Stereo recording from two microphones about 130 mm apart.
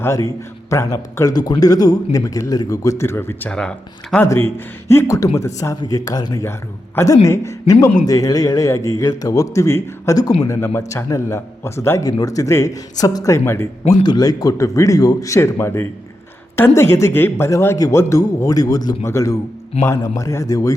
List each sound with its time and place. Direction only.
0.0 s a man's voice: 25° left (ahead or behind)
3.5 s speech: 5° left (ahead or behind)
4.5 s a man's voice: 20° left (ahead or behind)
13.9 s a man's voice: 30° left (ahead or behind)